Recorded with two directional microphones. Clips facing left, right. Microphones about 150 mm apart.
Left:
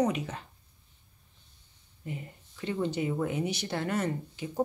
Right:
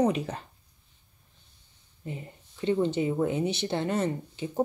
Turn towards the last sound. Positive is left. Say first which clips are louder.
# right 3 dB
turn(degrees=-25)  # may be behind; listen again after turning